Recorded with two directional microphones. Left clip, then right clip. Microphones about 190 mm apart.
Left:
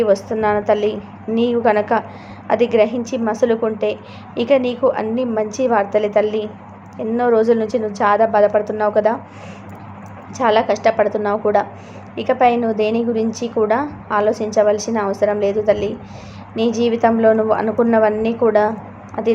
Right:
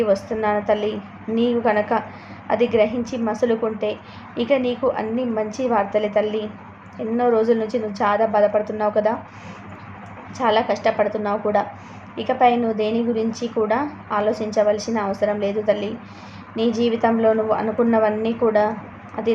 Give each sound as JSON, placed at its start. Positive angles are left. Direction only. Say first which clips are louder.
{"t": 0.0, "sound": "a woman's voice", "louder": "left 4 dB", "side_deg": 20}
{"t": 10.3, "sound": "a woman's voice", "louder": "left 4 dB", "side_deg": 20}